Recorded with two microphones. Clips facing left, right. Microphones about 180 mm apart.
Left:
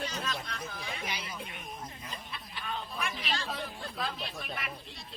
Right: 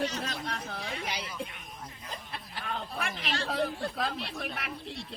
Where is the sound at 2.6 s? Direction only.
65° right (ahead or behind).